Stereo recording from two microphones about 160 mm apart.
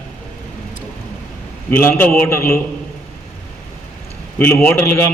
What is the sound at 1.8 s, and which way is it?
Speech, 10° left (ahead or behind).